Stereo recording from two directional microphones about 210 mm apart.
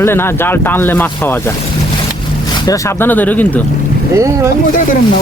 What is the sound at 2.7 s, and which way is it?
Speech, 10° left (ahead or behind).